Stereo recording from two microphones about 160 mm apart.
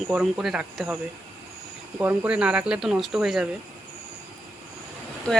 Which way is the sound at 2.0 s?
10° right (ahead or behind).